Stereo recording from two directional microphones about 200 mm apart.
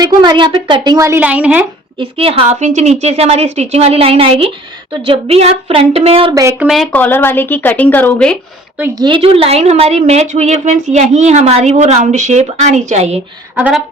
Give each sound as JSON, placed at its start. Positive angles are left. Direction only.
{"t": 0.0, "sound": "a woman's voice", "side_deg": -20}
{"t": 2.0, "sound": "a woman's voice", "side_deg": -30}
{"t": 6.3, "sound": "speech", "side_deg": -15}
{"t": 6.7, "sound": "speech", "side_deg": 5}
{"t": 8.8, "sound": "a woman's voice", "side_deg": -20}
{"t": 13.6, "sound": "speech", "side_deg": -5}